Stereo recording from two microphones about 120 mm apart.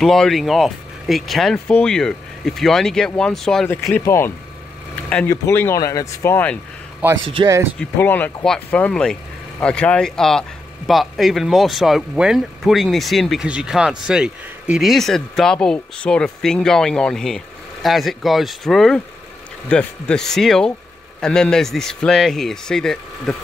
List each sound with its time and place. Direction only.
0.0 s speech: centre (ahead or behind)
3.9 s speech: 20° left (ahead or behind)
5.3 s speech: 20° left (ahead or behind)
7.0 s a man's voice: 15° right (ahead or behind)
7.4 s speech: 40° right (ahead or behind)
8.0 s speech: 20° left (ahead or behind)